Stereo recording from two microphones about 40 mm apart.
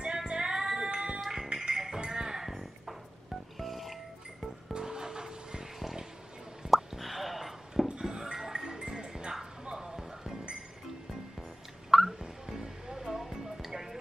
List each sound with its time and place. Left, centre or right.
0.0 s female singing: centre
1.2 s music: centre
4.7 s music: centre
6.7 s a sound: centre
8.0 s music: centre
9.7 s bow-wow: centre
11.9 s a sound: centre
12.2 s music: centre